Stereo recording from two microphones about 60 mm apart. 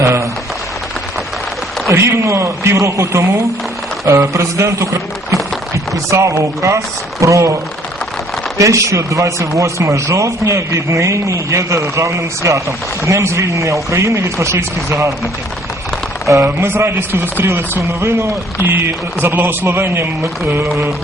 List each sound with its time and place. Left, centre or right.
0.0 s speech: right
1.9 s speech: right
16.4 s speech: right
19.2 s a man's voice: right